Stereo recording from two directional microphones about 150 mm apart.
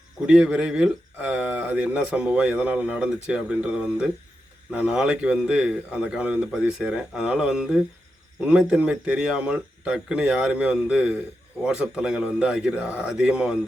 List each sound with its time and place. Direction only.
0.3 s a man's voice: 5° right (ahead or behind)